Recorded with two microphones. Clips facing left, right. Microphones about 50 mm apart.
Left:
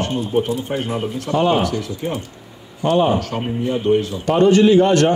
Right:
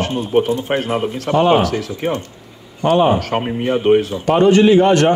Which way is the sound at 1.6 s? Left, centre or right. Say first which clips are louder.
Right 3 dB; right.